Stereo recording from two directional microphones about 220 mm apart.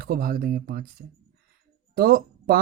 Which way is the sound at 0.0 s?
45° right (ahead or behind).